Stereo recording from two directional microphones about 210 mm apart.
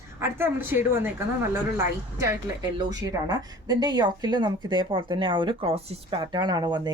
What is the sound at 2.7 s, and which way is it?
A woman's voice, 20° right (ahead or behind).